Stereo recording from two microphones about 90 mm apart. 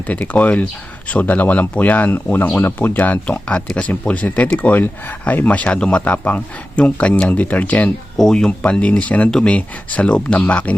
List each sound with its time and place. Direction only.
0.1 s speech: 15° left (ahead or behind)